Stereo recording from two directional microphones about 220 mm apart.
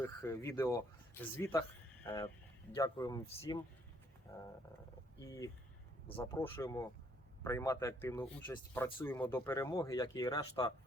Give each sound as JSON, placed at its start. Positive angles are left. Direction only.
{"t": 0.0, "sound": "speech", "side_deg": 10}
{"t": 5.2, "sound": "speech", "side_deg": 15}